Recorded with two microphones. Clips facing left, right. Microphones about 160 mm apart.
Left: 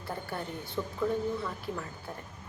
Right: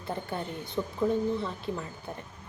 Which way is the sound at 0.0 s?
20° right (ahead or behind).